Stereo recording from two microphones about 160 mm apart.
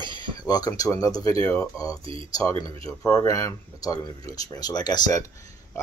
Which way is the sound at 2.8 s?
20° left (ahead or behind).